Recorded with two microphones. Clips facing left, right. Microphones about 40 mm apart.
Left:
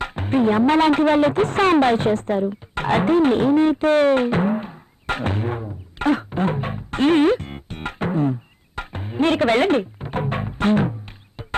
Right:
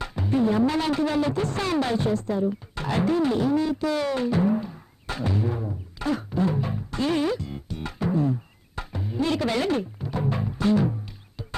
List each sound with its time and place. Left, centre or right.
0.0 s speech: left
5.0 s music: left